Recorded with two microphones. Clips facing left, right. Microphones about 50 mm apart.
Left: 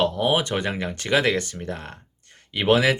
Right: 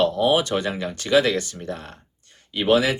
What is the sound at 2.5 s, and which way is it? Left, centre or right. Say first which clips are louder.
Speech: even; left.